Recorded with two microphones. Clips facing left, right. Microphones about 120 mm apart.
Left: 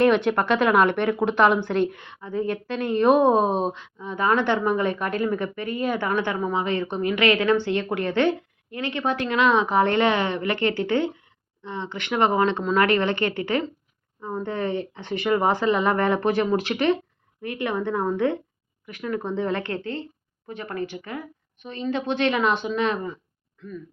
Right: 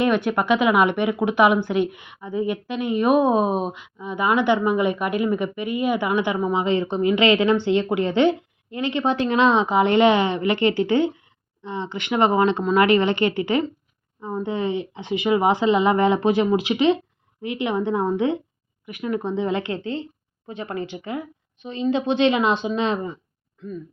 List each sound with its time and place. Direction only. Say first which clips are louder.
0.0 s a woman's voice: left 1 dB; 5° right (ahead or behind); by 23.8 s 25° right (ahead or behind)